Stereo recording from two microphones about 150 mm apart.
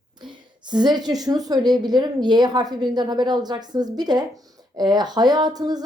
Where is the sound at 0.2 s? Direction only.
30° right (ahead or behind).